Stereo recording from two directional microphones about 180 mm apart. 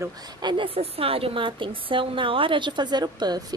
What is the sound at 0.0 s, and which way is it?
A woman's voice, 25° right (ahead or behind).